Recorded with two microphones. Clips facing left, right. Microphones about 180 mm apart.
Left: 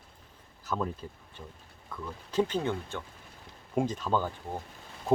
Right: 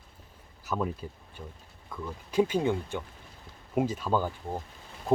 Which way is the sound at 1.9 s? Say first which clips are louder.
Right 2 dB; 10° right (ahead or behind).